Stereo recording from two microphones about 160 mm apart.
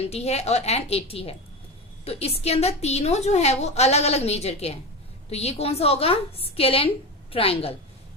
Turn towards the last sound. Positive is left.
turn(degrees=35)  # may be behind; listen again after turning